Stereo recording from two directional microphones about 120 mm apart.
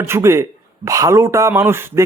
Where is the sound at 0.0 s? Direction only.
20° right (ahead or behind).